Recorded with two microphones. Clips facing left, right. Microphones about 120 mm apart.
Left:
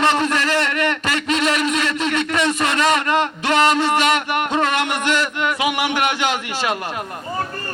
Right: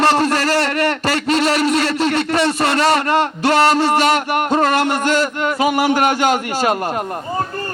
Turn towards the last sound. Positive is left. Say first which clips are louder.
# right 5 dB
turn(degrees=-45)  # may be behind; listen again after turning